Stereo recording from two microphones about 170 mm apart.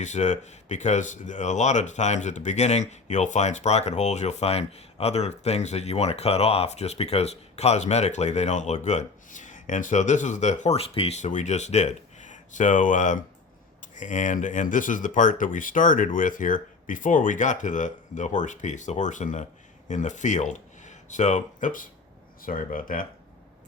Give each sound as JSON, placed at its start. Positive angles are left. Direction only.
{"t": 0.0, "sound": "speech", "side_deg": 45}